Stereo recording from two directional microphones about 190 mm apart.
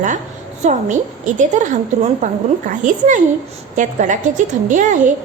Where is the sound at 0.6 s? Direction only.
40° right (ahead or behind).